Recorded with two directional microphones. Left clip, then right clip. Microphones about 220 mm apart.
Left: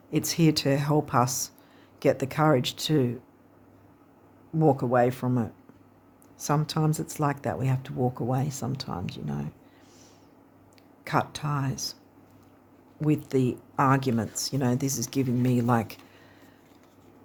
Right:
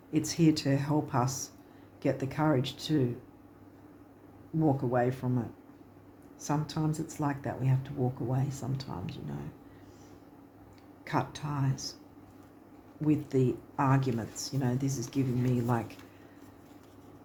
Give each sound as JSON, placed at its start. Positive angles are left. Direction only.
{"t": 0.1, "sound": "speech", "side_deg": 45}
{"t": 4.6, "sound": "speech", "side_deg": 45}
{"t": 11.0, "sound": "speech", "side_deg": 45}
{"t": 13.0, "sound": "speech", "side_deg": 45}